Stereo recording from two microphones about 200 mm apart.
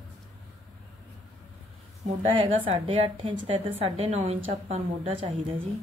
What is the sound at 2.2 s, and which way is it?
A woman's voice, 25° right (ahead or behind).